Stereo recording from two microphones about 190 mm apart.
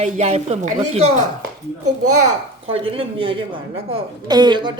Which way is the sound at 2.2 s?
30° right (ahead or behind).